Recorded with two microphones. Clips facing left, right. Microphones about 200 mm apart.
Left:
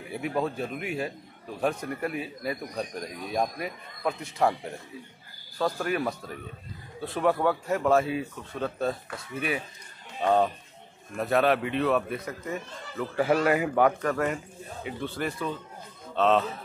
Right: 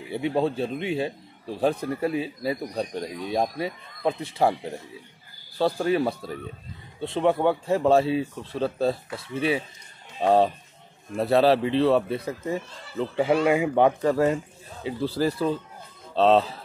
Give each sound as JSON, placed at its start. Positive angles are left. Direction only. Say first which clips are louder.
{"t": 0.1, "sound": "a man's voice", "louder": "right 5 dB", "side_deg": -30}